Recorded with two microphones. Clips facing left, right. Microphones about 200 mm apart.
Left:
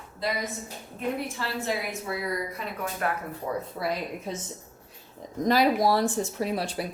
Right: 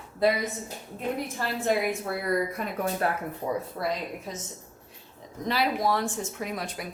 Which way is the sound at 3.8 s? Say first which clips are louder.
Left 1 dB; 5° left (ahead or behind).